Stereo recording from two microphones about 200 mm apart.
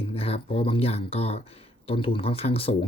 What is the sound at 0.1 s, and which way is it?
Speech, 30° left (ahead or behind).